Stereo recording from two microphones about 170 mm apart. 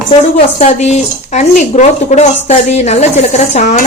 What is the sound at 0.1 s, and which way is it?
Speech, 35° left (ahead or behind).